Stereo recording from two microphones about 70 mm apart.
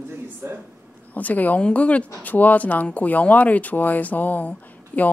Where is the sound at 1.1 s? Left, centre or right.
Left.